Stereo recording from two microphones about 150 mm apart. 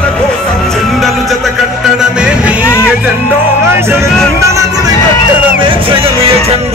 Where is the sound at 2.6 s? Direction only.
15° left (ahead or behind).